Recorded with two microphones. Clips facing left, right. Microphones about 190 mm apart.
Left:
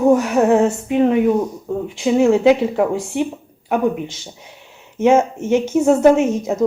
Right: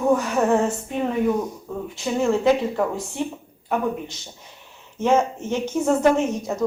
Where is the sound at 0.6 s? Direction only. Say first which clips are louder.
Left 9 dB; 80° left.